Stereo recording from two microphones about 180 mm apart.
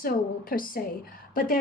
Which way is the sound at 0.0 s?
50° left (ahead or behind).